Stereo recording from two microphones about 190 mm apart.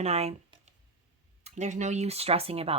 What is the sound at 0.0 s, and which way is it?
Speech, 35° right (ahead or behind).